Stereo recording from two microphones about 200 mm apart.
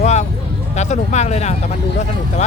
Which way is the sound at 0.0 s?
35° left (ahead or behind).